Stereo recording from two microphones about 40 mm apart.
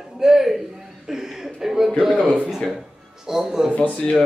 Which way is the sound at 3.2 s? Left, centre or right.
Centre.